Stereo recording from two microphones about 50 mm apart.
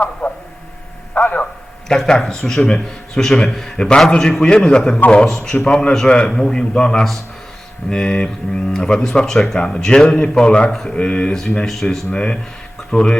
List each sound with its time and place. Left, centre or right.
0.0 s a man's voice: left
1.1 s a sound: left
1.9 s a man's voice: centre
11.6 s speech: centre
12.1 s a man's voice: centre